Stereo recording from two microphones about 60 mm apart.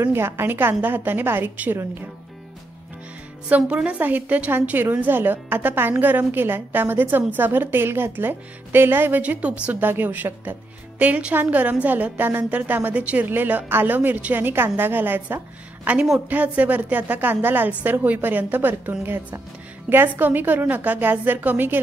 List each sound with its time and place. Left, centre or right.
0.1 s a woman's voice: right
3.4 s a woman's voice: right
9.2 s speech: right
9.8 s a woman's voice: right
15.8 s a woman's voice: right